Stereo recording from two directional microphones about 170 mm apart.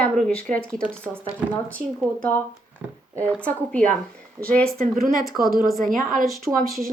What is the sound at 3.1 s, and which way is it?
Speech, 10° left (ahead or behind).